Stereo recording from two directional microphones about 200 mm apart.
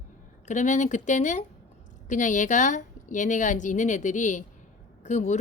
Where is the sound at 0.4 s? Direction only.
40° left (ahead or behind).